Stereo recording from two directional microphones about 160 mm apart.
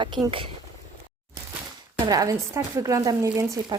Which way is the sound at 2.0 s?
20° right (ahead or behind).